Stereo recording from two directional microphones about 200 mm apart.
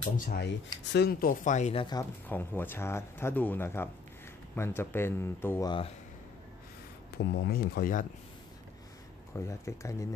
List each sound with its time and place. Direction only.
0.2 s speech: 55° left (ahead or behind); by 2.0 s 25° left (ahead or behind)
2.2 s speech: 10° left (ahead or behind)
5.7 s speech: 25° left (ahead or behind)
7.3 s speech: 50° left (ahead or behind)
9.3 s speech: 15° left (ahead or behind)